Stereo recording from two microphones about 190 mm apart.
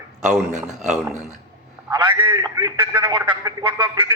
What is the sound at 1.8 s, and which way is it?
A man's voice, 25° right (ahead or behind).